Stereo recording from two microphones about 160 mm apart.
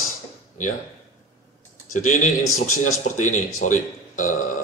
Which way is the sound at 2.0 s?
50° left (ahead or behind).